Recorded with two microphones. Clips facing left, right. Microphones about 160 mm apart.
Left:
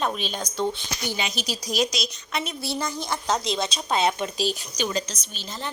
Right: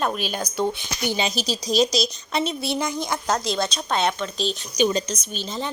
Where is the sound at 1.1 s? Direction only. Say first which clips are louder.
Right 6 dB; 35° right (ahead or behind); by 3.2 s 15° right (ahead or behind).